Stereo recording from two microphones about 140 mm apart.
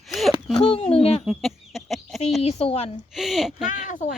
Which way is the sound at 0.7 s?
40° left (ahead or behind).